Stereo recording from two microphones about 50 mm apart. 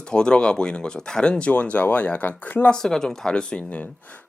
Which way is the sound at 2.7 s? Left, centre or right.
Centre.